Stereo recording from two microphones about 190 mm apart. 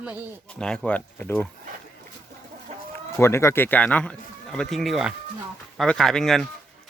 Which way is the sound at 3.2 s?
15° left (ahead or behind).